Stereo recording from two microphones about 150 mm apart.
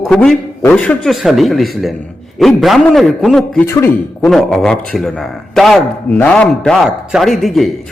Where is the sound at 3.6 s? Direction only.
20° left (ahead or behind).